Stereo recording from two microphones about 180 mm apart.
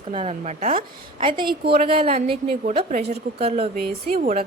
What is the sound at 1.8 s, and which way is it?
A woman's voice, 30° right (ahead or behind).